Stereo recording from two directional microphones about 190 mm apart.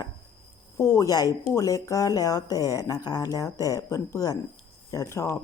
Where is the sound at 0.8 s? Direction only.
15° left (ahead or behind).